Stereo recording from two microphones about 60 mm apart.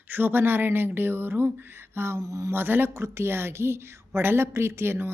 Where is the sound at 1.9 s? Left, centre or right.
Right.